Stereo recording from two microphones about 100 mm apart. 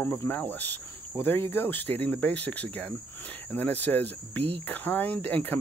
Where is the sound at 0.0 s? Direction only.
25° left (ahead or behind).